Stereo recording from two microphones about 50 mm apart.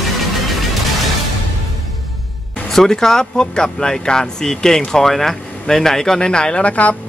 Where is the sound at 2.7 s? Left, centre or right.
Centre.